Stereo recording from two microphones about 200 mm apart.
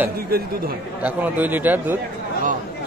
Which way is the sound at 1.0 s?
10° right (ahead or behind).